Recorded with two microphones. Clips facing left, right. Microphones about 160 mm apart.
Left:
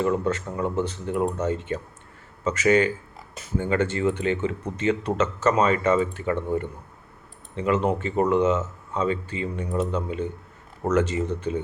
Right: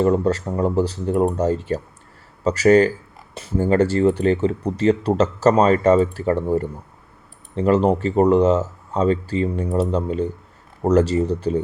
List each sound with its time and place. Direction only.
0.0 s speech: 35° right (ahead or behind)